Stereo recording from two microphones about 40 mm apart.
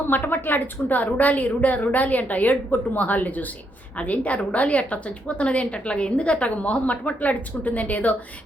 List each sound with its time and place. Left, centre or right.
0.1 s a woman's voice: left